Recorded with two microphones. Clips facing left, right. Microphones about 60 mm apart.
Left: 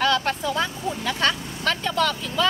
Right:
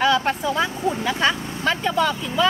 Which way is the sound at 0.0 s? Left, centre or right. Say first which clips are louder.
Right 3 dB; centre.